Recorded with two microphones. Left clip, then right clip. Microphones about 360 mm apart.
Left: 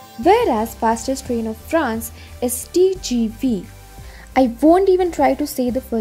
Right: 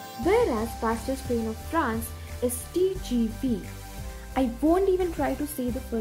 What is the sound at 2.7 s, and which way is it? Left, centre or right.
Speech, centre.